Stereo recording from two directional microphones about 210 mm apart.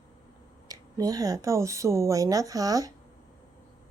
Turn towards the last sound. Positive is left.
turn(degrees=-15)  # may be behind; listen again after turning